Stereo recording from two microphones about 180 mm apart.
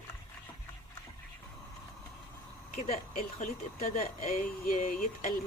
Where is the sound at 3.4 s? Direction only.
50° left (ahead or behind).